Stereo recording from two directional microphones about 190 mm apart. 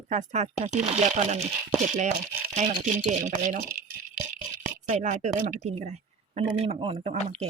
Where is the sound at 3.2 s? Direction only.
45° right (ahead or behind).